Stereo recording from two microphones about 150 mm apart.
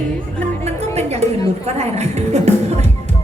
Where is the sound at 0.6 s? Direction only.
45° right (ahead or behind).